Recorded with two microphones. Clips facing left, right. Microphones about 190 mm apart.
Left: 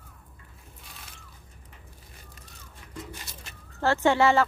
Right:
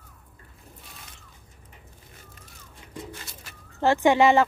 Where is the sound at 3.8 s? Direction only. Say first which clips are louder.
Right 3 dB; 15° right (ahead or behind).